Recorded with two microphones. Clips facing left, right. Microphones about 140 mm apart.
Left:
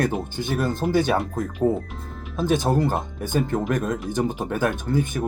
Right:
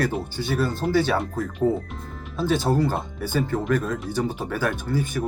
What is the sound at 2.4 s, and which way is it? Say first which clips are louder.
Speech: left 1 dB; 15° left (ahead or behind).